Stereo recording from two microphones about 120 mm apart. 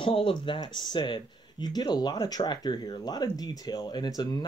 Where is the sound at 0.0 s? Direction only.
45° left (ahead or behind).